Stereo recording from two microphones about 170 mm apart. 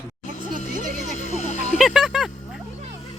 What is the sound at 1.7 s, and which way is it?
Music, 5° right (ahead or behind).